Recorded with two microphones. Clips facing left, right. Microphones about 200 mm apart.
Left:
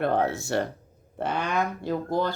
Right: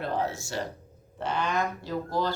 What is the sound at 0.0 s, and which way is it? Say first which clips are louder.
Speech: left 5 dB; 60° left (ahead or behind).